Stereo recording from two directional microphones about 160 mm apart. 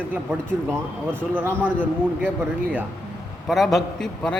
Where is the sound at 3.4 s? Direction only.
Centre (ahead or behind).